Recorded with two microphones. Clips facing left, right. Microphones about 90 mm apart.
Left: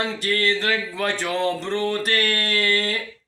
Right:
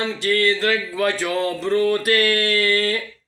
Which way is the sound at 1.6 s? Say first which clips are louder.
Right 5 dB; 30° left (ahead or behind).